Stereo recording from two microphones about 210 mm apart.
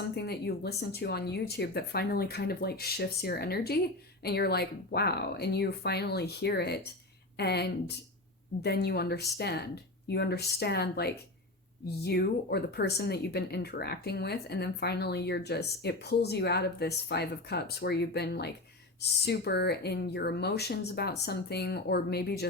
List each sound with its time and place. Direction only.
0.2 s speech: 50° left (ahead or behind)